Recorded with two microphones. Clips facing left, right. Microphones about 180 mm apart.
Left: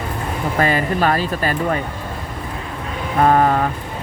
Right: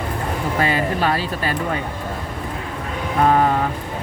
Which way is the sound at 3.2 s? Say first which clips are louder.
Left 2 dB; 50° left (ahead or behind).